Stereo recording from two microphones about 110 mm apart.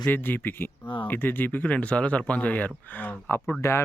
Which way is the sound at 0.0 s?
15° left (ahead or behind).